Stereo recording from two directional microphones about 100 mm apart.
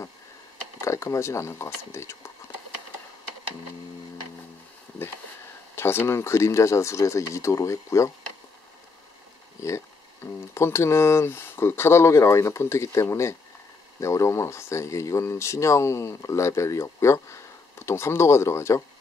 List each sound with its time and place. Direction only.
0.7 s speech: 30° left (ahead or behind)
5.8 s speech: 25° left (ahead or behind)
9.6 s speech: 30° left (ahead or behind)